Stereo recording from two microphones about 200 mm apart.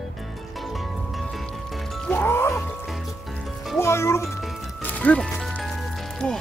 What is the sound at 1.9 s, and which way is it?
Music, 5° left (ahead or behind).